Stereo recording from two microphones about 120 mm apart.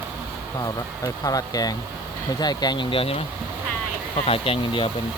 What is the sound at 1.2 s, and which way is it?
Speech, 30° left (ahead or behind).